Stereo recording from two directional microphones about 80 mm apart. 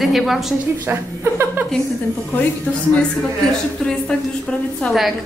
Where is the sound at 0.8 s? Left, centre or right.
Right.